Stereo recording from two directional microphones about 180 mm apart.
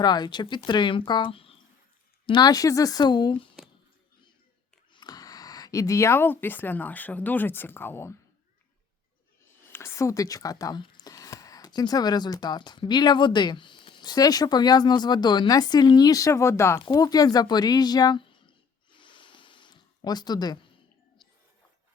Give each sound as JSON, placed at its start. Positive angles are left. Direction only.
{"t": 0.0, "sound": "speech", "side_deg": 25}
{"t": 4.9, "sound": "speech", "side_deg": 20}
{"t": 9.7, "sound": "speech", "side_deg": 15}
{"t": 18.9, "sound": "a sound", "side_deg": 25}